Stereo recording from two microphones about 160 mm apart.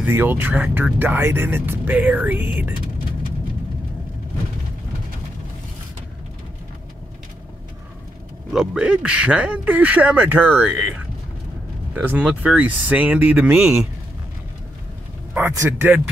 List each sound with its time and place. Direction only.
0.0 s speech: 10° right (ahead or behind)
8.5 s speech: 5° right (ahead or behind)
11.9 s speech: 10° right (ahead or behind)
15.3 s a man's voice: 15° right (ahead or behind)